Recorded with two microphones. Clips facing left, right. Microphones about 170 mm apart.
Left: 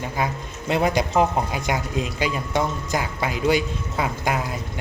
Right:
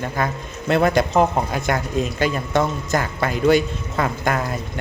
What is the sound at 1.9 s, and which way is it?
Speech, 50° right (ahead or behind).